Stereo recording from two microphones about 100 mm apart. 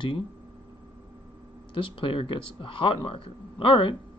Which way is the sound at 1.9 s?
60° left (ahead or behind).